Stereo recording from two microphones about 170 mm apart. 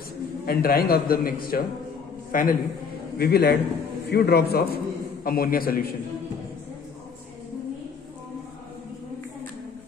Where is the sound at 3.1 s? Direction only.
70° left (ahead or behind).